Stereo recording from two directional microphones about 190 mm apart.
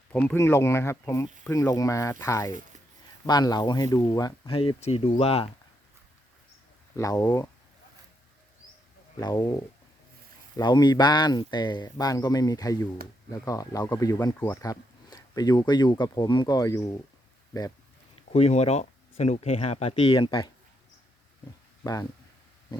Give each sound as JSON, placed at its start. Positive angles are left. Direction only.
{"t": 0.1, "sound": "speech", "side_deg": 10}
{"t": 6.9, "sound": "speech", "side_deg": 20}
{"t": 9.2, "sound": "speech", "side_deg": 20}
{"t": 18.3, "sound": "speech", "side_deg": 35}